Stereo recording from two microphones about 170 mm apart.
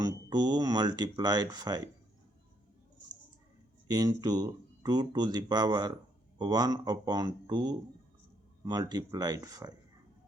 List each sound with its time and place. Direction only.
0.0 s speech: 25° right (ahead or behind)
3.8 s speech: 20° right (ahead or behind)